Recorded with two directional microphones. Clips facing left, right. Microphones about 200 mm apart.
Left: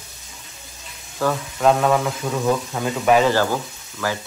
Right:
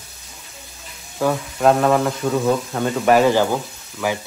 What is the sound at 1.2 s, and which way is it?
Speech, 5° right (ahead or behind).